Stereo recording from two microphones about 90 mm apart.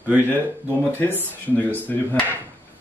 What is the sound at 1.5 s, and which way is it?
Speech, 20° left (ahead or behind).